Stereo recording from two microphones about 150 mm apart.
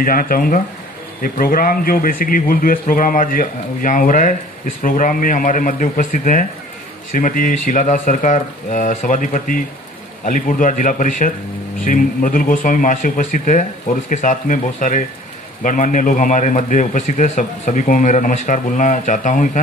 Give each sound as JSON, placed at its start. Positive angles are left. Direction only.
{"t": 0.0, "sound": "a man's voice", "side_deg": 70}